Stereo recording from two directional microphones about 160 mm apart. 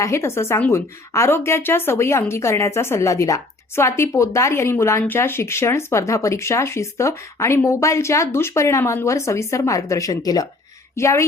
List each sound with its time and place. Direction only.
0.0 s a woman's voice: 15° left (ahead or behind)